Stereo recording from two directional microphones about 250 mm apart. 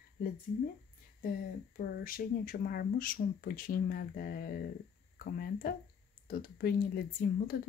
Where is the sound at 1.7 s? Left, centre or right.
Left.